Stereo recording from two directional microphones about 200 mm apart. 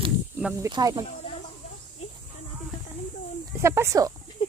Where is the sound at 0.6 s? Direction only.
20° right (ahead or behind).